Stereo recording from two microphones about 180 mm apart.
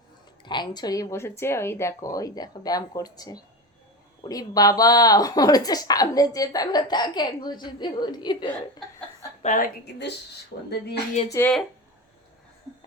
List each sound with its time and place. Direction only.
0.4 s speech: 25° left (ahead or behind)
9.4 s a woman's voice: 45° left (ahead or behind)
10.7 s speech: 65° left (ahead or behind)
11.3 s speech: 15° left (ahead or behind)